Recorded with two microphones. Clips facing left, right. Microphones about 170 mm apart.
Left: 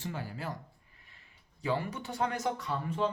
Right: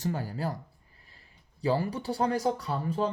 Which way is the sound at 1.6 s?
35° right (ahead or behind).